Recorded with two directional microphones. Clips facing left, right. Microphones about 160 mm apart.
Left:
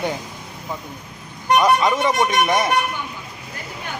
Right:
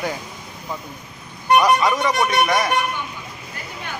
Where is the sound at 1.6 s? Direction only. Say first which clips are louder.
Left 1 dB; 25° left (ahead or behind).